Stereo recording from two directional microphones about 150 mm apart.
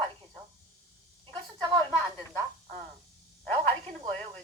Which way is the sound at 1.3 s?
25° right (ahead or behind).